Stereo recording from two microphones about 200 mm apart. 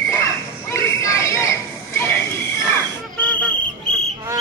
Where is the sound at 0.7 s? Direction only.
15° left (ahead or behind).